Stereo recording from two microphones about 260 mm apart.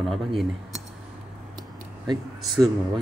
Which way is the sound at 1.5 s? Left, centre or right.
Centre.